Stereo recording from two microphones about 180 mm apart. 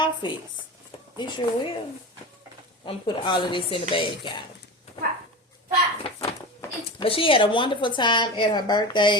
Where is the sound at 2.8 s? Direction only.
25° left (ahead or behind).